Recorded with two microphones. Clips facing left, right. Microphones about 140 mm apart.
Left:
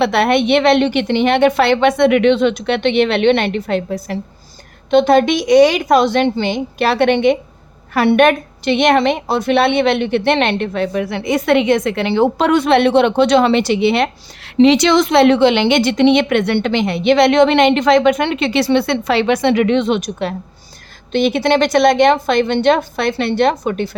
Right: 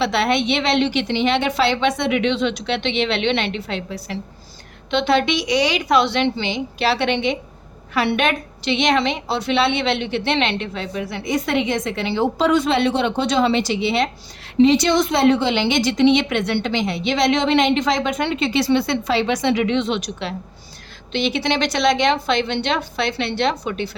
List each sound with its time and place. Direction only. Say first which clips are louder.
0.0 s a woman's voice: left 5 dB; 55° left (ahead or behind)